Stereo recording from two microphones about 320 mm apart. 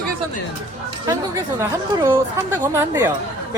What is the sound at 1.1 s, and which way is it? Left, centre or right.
Speech, centre.